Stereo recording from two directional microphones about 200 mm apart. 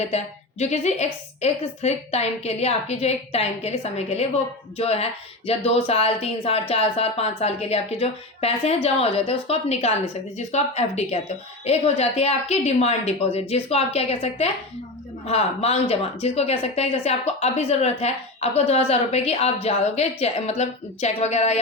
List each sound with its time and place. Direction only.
0.6 s speech: 35° left (ahead or behind)